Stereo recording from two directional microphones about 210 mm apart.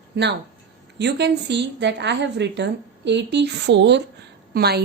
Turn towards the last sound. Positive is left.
turn(degrees=-50)  # may be behind; listen again after turning